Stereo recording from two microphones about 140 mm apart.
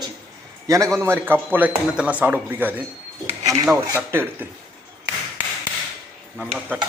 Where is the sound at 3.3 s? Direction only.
20° right (ahead or behind).